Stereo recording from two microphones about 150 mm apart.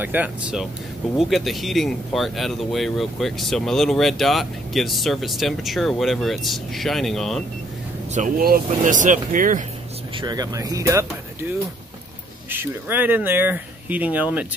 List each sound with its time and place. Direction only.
0.0 s speech: 10° right (ahead or behind)
8.4 s speech: 70° right (ahead or behind)
10.1 s speech: 25° right (ahead or behind)
12.4 s speech: 15° right (ahead or behind)